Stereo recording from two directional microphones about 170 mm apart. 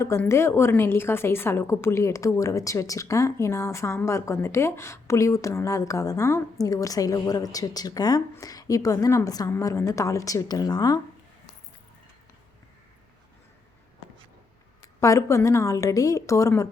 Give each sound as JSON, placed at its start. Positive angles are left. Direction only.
{"t": 0.0, "sound": "a woman's voice", "side_deg": 15}
{"t": 15.0, "sound": "a woman's voice", "side_deg": 20}